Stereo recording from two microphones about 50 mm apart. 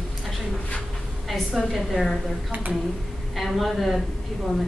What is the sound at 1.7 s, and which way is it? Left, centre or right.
Speech, centre.